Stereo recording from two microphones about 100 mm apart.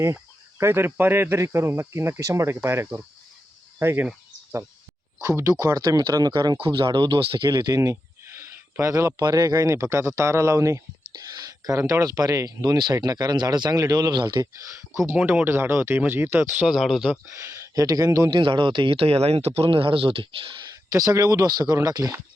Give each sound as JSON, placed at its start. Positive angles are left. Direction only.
{"t": 0.6, "sound": "speech", "side_deg": -25}
{"t": 5.2, "sound": "speech", "side_deg": -30}
{"t": 6.6, "sound": "speech", "side_deg": -55}
{"t": 7.8, "sound": "speech", "side_deg": -25}
{"t": 14.5, "sound": "speech", "side_deg": -25}
{"t": 15.2, "sound": "speech", "side_deg": -15}
{"t": 17.2, "sound": "speech", "side_deg": -25}
{"t": 18.3, "sound": "speech", "side_deg": -50}
{"t": 20.9, "sound": "speech", "side_deg": -35}